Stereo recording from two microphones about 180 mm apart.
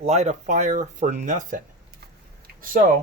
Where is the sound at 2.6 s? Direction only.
50° right (ahead or behind).